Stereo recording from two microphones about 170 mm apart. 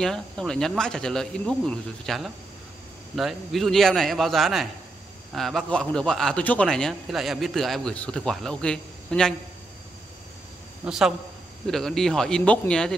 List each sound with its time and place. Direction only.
0.0 s a man's voice: 5° left (ahead or behind)
10.9 s a man's voice: 5° right (ahead or behind)